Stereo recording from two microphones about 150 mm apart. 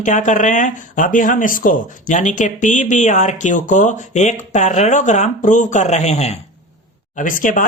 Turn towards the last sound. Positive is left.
turn(degrees=60)  # may be behind; listen again after turning